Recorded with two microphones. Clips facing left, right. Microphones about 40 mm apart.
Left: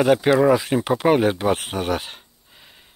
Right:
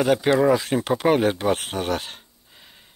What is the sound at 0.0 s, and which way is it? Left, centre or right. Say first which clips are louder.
Speech: left 2 dB; centre.